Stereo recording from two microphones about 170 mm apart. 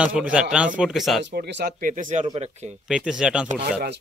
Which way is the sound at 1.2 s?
80° right.